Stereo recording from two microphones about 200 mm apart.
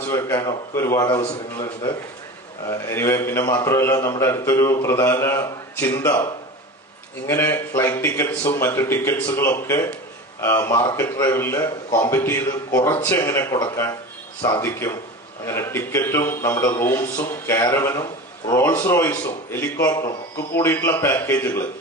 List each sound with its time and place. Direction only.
0.0 s a man's voice: 15° left (ahead or behind)
2.6 s a man's voice: 10° left (ahead or behind)
7.3 s a man's voice: 10° left (ahead or behind)